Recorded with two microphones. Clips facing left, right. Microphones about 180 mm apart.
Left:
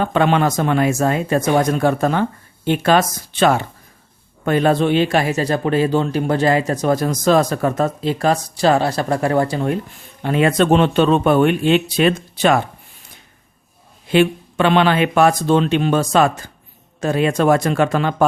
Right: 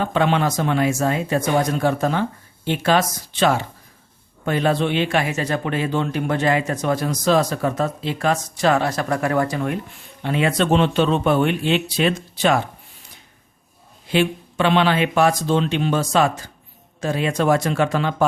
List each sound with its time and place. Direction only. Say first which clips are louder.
0.0 s speech: left 3 dB; 55° left (ahead or behind); by 9.7 s 30° left (ahead or behind)
10.2 s speech: left 4 dB; 50° left (ahead or behind)
14.1 s speech: left 5 dB; 55° left (ahead or behind)